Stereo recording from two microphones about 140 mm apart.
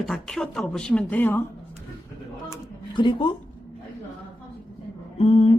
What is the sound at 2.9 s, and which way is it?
Speech, 35° left (ahead or behind).